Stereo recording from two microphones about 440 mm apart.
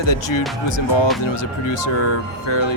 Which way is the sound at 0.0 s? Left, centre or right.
Left.